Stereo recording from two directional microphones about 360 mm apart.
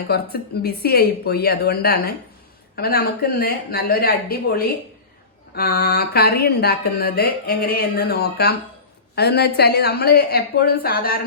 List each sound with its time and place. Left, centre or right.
0.1 s speech: left